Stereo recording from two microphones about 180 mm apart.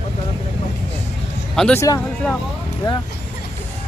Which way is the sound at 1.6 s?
5° left (ahead or behind).